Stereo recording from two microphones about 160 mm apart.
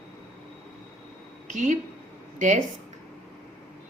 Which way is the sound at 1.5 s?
50° right (ahead or behind).